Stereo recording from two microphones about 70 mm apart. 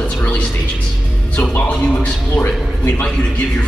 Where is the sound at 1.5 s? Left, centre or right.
Centre.